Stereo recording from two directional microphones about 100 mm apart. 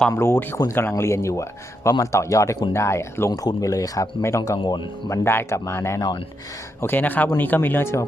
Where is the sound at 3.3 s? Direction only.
40° left (ahead or behind).